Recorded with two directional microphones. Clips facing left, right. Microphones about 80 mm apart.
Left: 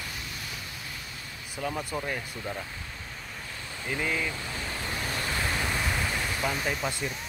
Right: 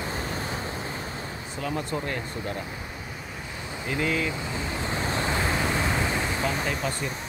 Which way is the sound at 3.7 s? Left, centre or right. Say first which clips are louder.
Right 3 dB; centre.